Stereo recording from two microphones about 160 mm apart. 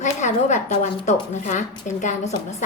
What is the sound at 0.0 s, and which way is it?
Speech, 50° left (ahead or behind).